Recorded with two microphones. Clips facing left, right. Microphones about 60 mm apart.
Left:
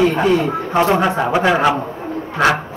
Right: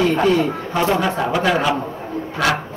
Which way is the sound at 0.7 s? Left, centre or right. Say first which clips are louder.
Left 5 dB; left.